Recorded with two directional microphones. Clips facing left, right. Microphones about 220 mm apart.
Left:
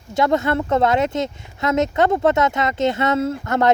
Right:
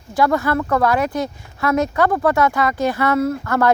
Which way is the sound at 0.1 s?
25° left (ahead or behind).